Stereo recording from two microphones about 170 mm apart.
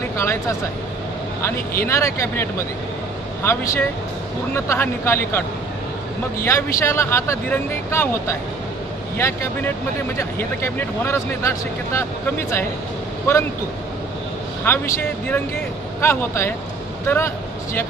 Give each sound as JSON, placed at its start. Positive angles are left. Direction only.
{"t": 0.2, "sound": "speech", "side_deg": 15}
{"t": 6.4, "sound": "speech", "side_deg": 15}
{"t": 14.6, "sound": "speech", "side_deg": 15}